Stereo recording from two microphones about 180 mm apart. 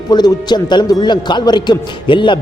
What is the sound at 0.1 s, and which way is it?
A man's voice, 25° left (ahead or behind).